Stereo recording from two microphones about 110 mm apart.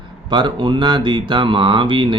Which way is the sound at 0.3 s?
45° right (ahead or behind).